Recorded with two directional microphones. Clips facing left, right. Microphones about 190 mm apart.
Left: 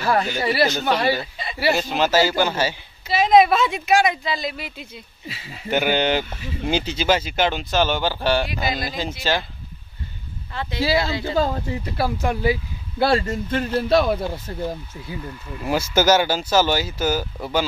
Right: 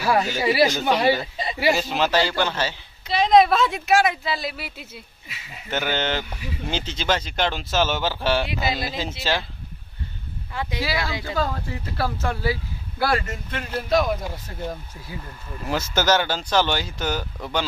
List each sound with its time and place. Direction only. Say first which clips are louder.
0.0 s speech: even; 5° right (ahead or behind)
1.7 s a woman's voice: left 2 dB; centre (ahead or behind)
5.7 s a woman's voice: left 5 dB; 15° left (ahead or behind); by 9.1 s centre (ahead or behind)
10.5 s speech: even; 10° right (ahead or behind)
10.8 s speech: left 8 dB; 25° left (ahead or behind)
13.0 s speech: left 5 dB; 30° left (ahead or behind)
15.6 s speech: left 4 dB; 10° left (ahead or behind)